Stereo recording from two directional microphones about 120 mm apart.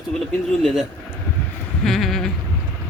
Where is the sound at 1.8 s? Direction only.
Centre (ahead or behind).